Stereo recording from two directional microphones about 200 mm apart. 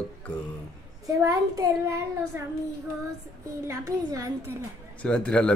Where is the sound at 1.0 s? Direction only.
15° right (ahead or behind).